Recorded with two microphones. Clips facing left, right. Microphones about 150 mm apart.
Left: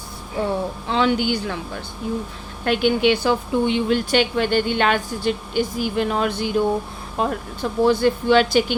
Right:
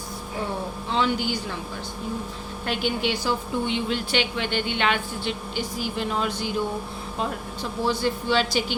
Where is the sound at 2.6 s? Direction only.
60° left (ahead or behind).